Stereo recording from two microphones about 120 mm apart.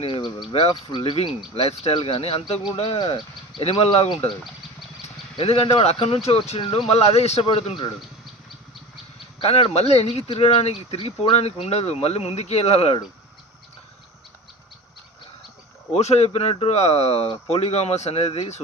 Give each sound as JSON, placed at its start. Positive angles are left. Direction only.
{"t": 0.0, "sound": "speech", "side_deg": 40}
{"t": 2.0, "sound": "speech", "side_deg": 50}
{"t": 5.0, "sound": "a sound", "side_deg": 55}
{"t": 5.8, "sound": "speech", "side_deg": 55}
{"t": 6.6, "sound": "speech", "side_deg": 45}
{"t": 9.4, "sound": "speech", "side_deg": 55}
{"t": 15.9, "sound": "speech", "side_deg": 65}